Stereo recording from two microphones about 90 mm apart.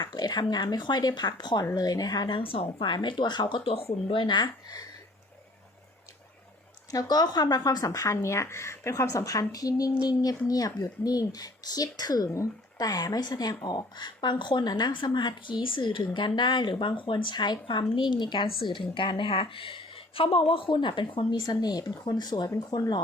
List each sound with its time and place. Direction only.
0.0 s speech: 50° left (ahead or behind)
2.4 s speech: 90° left; by 4.8 s 60° left (ahead or behind)
6.9 s a woman's voice: 45° left (ahead or behind)